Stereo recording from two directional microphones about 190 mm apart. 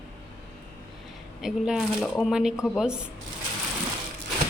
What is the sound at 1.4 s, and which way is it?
Speech, centre (ahead or behind).